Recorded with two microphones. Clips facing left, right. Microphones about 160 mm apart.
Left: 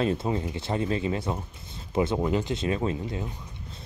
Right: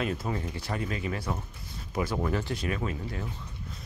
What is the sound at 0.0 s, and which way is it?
Speech, 25° left (ahead or behind).